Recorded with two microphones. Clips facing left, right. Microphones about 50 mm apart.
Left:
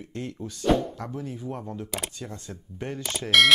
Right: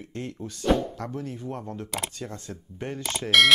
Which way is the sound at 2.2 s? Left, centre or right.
Centre.